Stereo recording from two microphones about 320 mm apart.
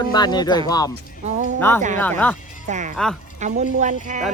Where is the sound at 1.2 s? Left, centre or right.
Right.